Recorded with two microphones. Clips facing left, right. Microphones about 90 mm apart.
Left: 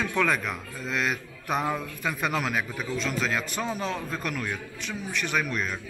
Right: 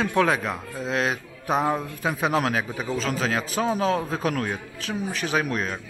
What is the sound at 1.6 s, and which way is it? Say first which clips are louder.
Speech: right 4 dB; 35° right (ahead or behind).